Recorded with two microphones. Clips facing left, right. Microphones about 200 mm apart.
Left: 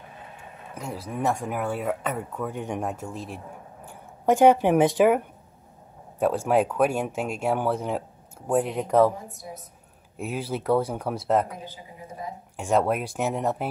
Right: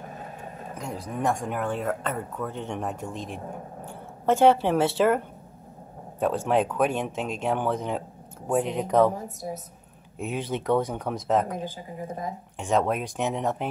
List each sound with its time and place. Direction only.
0.0 s a sound: 45° right (ahead or behind)
0.7 s speech: 5° left (ahead or behind)
9.4 s a woman's voice: 40° right (ahead or behind)
10.1 s speech: 5° left (ahead or behind)
11.6 s speech: 45° right (ahead or behind)
12.5 s speech: 10° left (ahead or behind)